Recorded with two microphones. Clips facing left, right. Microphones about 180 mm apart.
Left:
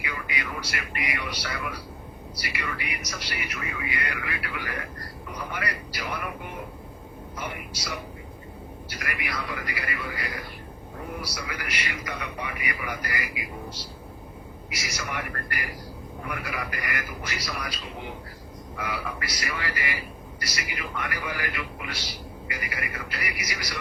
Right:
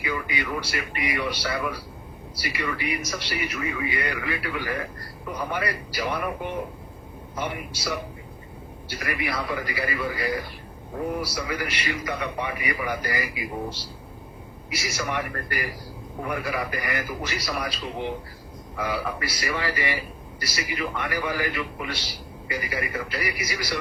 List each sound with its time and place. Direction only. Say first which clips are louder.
0.0 s a man's voice: right 5 dB; 30° right (ahead or behind)
7.3 s a man's voice: right 6 dB; 30° right (ahead or behind)